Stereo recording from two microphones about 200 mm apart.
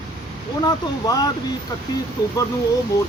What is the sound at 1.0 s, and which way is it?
Speech, 20° left (ahead or behind).